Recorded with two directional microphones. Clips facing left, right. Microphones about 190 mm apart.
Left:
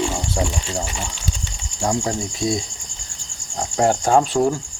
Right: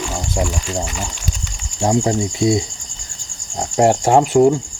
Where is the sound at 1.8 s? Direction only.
20° right (ahead or behind).